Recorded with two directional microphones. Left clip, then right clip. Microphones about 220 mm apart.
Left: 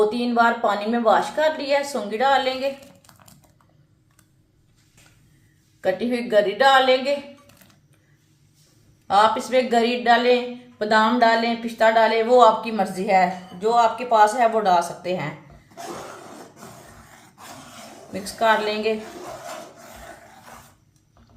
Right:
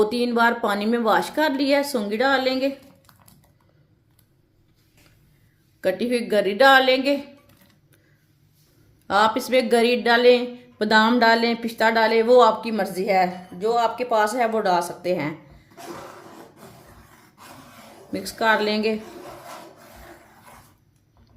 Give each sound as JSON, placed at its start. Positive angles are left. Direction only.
{"t": 0.1, "sound": "speech", "side_deg": -45}
{"t": 5.8, "sound": "speech", "side_deg": -45}
{"t": 9.0, "sound": "speech", "side_deg": -45}
{"t": 18.1, "sound": "speech", "side_deg": -45}